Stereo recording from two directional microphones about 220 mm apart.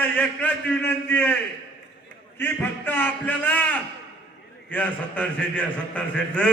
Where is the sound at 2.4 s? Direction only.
10° left (ahead or behind).